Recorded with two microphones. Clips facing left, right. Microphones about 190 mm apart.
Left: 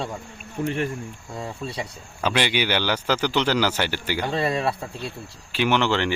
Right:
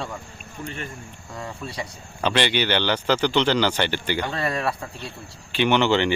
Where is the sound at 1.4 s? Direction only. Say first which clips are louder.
Left 2 dB; 25° left (ahead or behind).